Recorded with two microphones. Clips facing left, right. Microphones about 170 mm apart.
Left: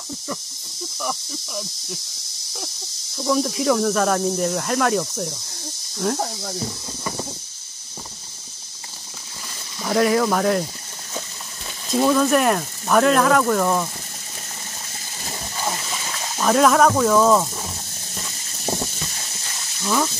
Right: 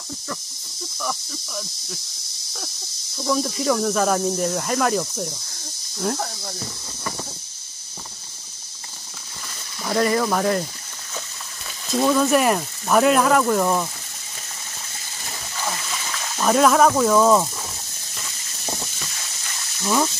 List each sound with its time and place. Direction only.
1.0 s cricket: 10° left (ahead or behind)
3.2 s speech: 5° left (ahead or behind)
9.8 s speech: centre (ahead or behind)
11.9 s speech: centre (ahead or behind)
15.5 s a sound: 30° left (ahead or behind)
16.3 s speech: centre (ahead or behind)
19.8 s speech: 10° right (ahead or behind)